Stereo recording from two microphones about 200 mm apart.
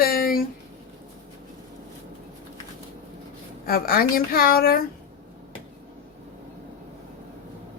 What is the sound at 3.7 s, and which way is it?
A woman's voice, 45° left (ahead or behind).